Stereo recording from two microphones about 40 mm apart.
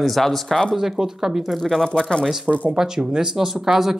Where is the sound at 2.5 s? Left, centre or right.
Right.